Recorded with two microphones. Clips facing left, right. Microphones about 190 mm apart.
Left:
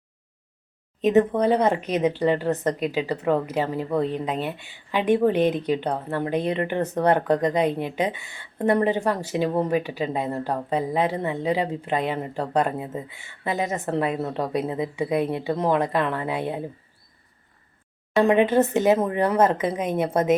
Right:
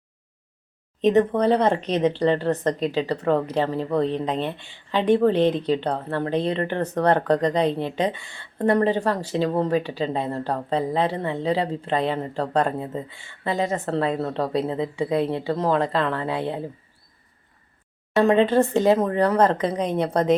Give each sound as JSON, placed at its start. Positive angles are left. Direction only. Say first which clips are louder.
{"t": 1.0, "sound": "speech", "louder": "right 1 dB", "side_deg": 10}
{"t": 18.2, "sound": "speech", "louder": "right 1 dB", "side_deg": 15}